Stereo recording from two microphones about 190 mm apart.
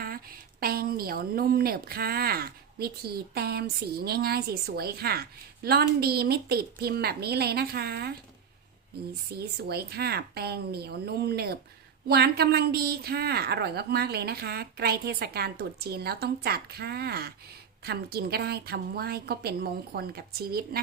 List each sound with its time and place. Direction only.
0.6 s a woman's voice: 50° right (ahead or behind)
9.3 s a woman's voice: 55° right (ahead or behind)